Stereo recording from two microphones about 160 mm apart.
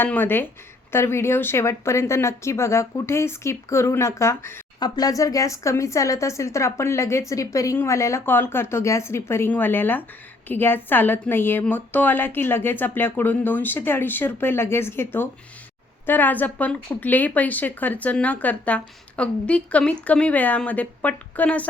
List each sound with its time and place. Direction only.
0.0 s speech: 10° left (ahead or behind)